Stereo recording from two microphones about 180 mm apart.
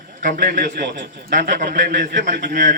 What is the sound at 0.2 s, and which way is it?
A man's voice, 45° right (ahead or behind).